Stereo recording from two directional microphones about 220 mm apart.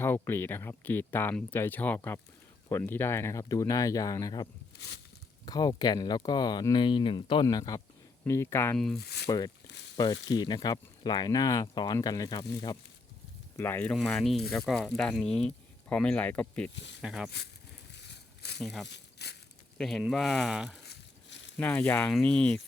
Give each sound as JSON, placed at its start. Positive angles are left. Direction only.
{"t": 0.0, "sound": "speech", "side_deg": 10}
{"t": 5.5, "sound": "speech", "side_deg": 20}
{"t": 9.0, "sound": "speech", "side_deg": 45}
{"t": 10.0, "sound": "speech", "side_deg": 20}
{"t": 16.7, "sound": "speech", "side_deg": 55}
{"t": 17.0, "sound": "speech", "side_deg": 0}
{"t": 18.6, "sound": "speech", "side_deg": 0}
{"t": 18.9, "sound": "crumpling", "side_deg": 50}
{"t": 19.8, "sound": "speech", "side_deg": 0}
{"t": 20.8, "sound": "a sound", "side_deg": 50}
{"t": 21.6, "sound": "speech", "side_deg": 10}